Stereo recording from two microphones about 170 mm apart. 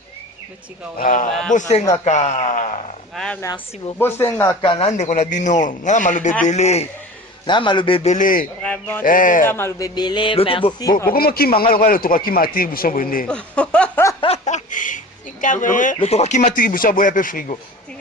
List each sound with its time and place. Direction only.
0.9 s a man's voice: 50° left (ahead or behind)
1.3 s a man's voice: 5° left (ahead or behind)
1.5 s a man's voice: 45° left (ahead or behind)
3.4 s speech: 20° left (ahead or behind)
4.6 s a man's voice: 35° left (ahead or behind)
7.4 s a man's voice: 25° left (ahead or behind)
8.1 s a man's voice: 50° left (ahead or behind)
8.6 s a sound: 10° left (ahead or behind)
9.0 s a man's voice: 50° left (ahead or behind)
9.5 s a man's voice: 15° left (ahead or behind)
10.9 s a man's voice: 60° left (ahead or behind)
13.2 s chuckle: 5° left (ahead or behind)
14.2 s a sound: 40° left (ahead or behind)
16.0 s a man's voice: 40° left (ahead or behind)